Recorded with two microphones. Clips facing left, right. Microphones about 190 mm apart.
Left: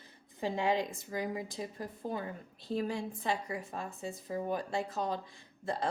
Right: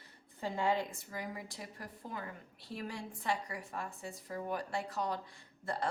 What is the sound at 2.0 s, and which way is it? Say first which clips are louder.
A woman's voice: left 6 dB; 30° left (ahead or behind).